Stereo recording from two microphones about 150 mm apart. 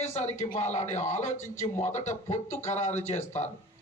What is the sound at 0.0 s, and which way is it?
Speech, 45° left (ahead or behind).